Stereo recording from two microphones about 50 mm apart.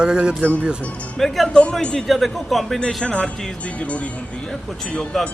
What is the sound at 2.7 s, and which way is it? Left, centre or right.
Speech, centre.